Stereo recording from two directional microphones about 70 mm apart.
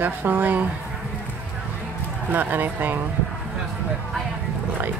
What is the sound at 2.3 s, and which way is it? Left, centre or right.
Speech, right.